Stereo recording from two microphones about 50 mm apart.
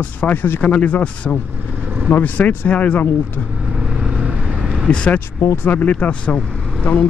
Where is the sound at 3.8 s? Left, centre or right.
Centre.